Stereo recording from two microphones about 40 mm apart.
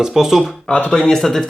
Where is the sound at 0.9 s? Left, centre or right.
Centre.